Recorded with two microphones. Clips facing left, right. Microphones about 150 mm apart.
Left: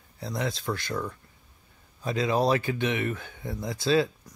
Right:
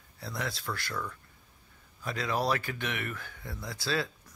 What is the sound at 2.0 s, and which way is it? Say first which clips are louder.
Speech: left 6 dB; 20° left (ahead or behind).